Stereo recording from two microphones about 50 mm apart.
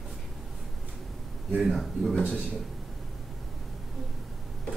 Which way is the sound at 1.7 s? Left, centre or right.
Centre.